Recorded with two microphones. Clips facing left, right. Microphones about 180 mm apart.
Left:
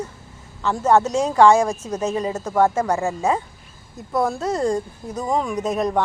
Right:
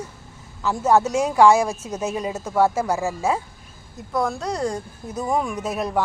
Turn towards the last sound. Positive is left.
turn(degrees=-5)  # may be behind; listen again after turning